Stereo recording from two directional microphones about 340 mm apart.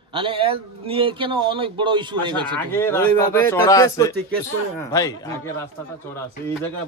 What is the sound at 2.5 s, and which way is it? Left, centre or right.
A man's voice, centre.